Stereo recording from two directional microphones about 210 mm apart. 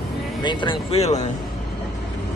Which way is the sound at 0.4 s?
20° left (ahead or behind).